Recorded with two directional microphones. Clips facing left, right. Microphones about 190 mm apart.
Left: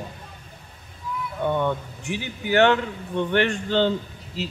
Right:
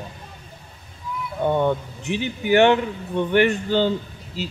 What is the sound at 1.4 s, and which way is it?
Speech, 30° right (ahead or behind).